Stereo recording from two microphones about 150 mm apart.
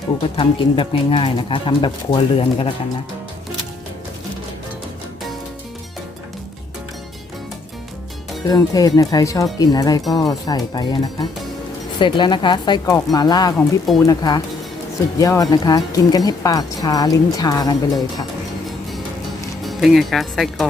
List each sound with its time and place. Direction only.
0.3 s speech: 35° left (ahead or behind)
8.4 s speech: 25° left (ahead or behind)
13.6 s speech: centre (ahead or behind)
14.0 s speech: 25° left (ahead or behind)
19.6 s speech: centre (ahead or behind)